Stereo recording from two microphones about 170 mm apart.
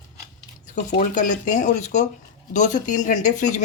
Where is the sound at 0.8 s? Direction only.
45° left (ahead or behind).